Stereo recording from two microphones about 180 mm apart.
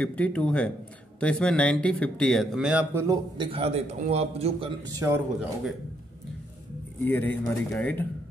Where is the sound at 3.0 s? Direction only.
25° right (ahead or behind).